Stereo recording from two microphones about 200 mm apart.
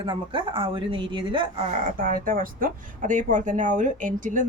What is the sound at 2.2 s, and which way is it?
A woman's voice, 45° right (ahead or behind).